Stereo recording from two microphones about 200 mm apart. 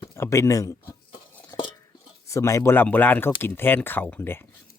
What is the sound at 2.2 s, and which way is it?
Speech, 15° left (ahead or behind).